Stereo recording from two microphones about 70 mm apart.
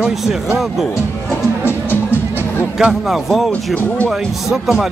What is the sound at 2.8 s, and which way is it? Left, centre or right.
Speech, centre.